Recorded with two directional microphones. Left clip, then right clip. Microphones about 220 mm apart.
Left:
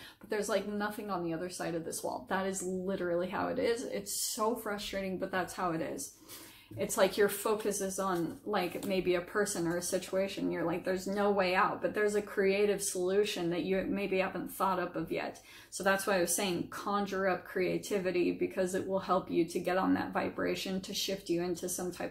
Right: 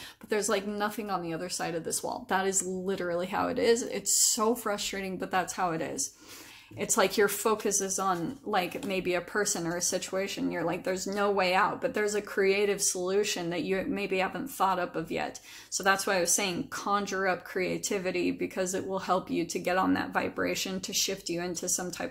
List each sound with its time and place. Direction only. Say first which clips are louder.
0.3 s speech: right 4 dB; 45° right (ahead or behind)